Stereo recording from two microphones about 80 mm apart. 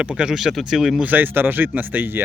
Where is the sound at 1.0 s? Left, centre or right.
Right.